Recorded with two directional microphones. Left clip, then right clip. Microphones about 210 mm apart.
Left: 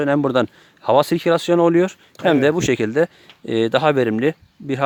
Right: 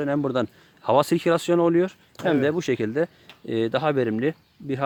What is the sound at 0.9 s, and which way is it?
Speech, 20° left (ahead or behind).